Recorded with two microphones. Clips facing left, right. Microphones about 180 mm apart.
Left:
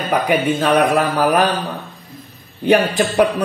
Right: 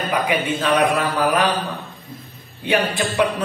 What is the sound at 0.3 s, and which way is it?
Speech, 45° left (ahead or behind).